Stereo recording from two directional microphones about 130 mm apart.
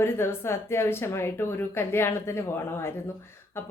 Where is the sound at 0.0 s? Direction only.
20° left (ahead or behind).